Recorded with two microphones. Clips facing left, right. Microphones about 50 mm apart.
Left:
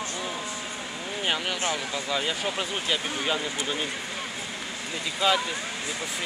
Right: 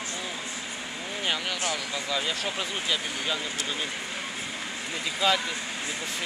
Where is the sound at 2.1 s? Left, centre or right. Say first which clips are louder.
Left 2 dB; centre.